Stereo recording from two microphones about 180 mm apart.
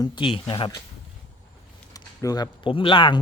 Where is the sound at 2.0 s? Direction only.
20° left (ahead or behind).